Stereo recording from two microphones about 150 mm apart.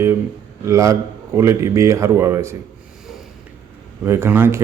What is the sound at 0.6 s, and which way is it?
Speech, 20° right (ahead or behind).